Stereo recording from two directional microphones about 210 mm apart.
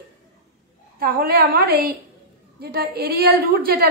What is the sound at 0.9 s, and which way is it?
A woman's voice, 45° right (ahead or behind).